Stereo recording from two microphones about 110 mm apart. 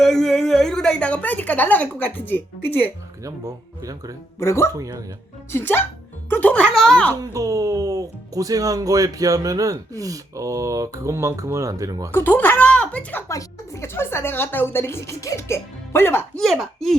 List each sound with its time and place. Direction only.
0.0 s a sound: 5° left (ahead or behind)
3.2 s speech: 30° right (ahead or behind)
4.4 s a woman's voice: 25° left (ahead or behind)
4.7 s speech: 30° right (ahead or behind)
5.5 s a woman's voice: 20° left (ahead or behind)
7.2 s speech: 30° right (ahead or behind)
12.1 s speech: 20° left (ahead or behind)
13.2 s a woman's voice: 25° left (ahead or behind)
16.3 s speech: 5° left (ahead or behind)